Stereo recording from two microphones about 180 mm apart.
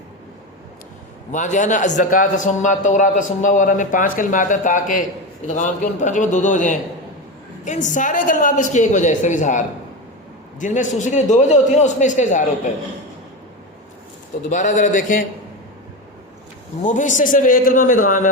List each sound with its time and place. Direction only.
1.3 s a man's voice: 45° left (ahead or behind)
14.5 s a man's voice: 45° left (ahead or behind)
16.8 s a man's voice: 45° left (ahead or behind)